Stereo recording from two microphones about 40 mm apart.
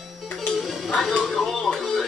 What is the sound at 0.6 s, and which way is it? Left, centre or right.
Music, centre.